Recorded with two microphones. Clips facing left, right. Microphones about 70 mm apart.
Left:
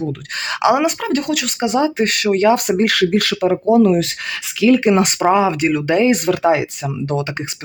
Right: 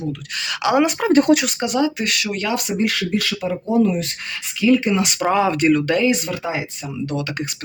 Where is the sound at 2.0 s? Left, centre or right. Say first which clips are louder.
Left 8 dB; left.